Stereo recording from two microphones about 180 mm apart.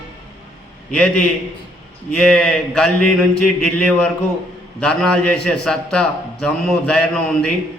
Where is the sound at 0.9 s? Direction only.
5° left (ahead or behind).